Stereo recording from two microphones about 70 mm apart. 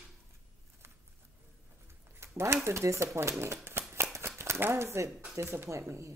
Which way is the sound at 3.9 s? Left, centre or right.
Right.